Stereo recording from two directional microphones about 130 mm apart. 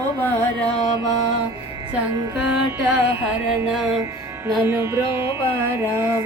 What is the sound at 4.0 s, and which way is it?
Music, 20° right (ahead or behind).